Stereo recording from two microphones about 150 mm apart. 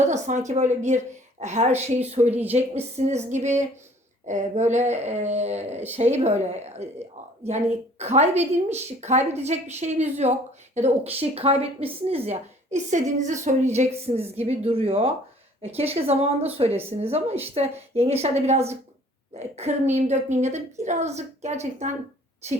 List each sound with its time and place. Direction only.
0.0 s a woman's voice: 50° right (ahead or behind)